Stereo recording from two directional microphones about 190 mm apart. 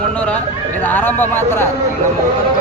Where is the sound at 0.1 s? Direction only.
5° left (ahead or behind).